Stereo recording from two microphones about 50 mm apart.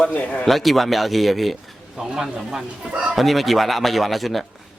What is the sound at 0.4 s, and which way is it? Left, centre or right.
Speech, centre.